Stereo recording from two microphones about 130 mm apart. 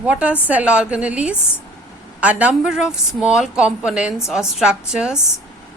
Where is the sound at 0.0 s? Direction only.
10° right (ahead or behind).